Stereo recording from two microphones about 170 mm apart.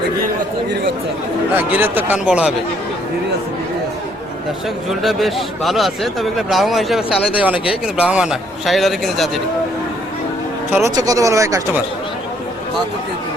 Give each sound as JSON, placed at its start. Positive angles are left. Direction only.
{"t": 1.5, "sound": "a man's voice", "side_deg": -10}
{"t": 4.9, "sound": "speech", "side_deg": 0}
{"t": 10.8, "sound": "speech", "side_deg": -20}